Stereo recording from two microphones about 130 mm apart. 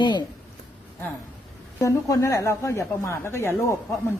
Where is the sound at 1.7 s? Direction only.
25° left (ahead or behind).